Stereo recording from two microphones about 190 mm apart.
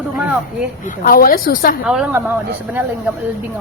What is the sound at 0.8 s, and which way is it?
Speech, 50° left (ahead or behind).